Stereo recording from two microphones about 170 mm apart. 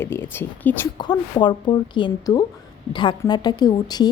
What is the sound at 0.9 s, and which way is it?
A woman's voice, 25° left (ahead or behind).